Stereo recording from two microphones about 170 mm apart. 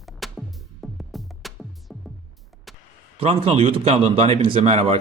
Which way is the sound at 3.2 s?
35° right (ahead or behind).